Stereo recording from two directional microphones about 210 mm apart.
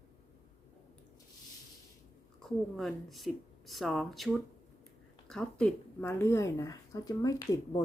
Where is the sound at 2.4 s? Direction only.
Centre (ahead or behind).